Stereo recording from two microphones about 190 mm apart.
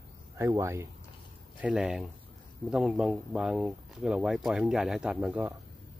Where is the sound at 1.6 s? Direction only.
5° right (ahead or behind).